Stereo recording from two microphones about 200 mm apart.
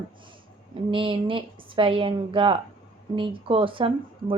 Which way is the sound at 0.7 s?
25° right (ahead or behind).